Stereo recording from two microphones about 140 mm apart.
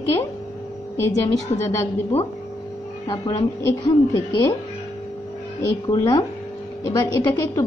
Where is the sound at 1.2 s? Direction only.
20° left (ahead or behind).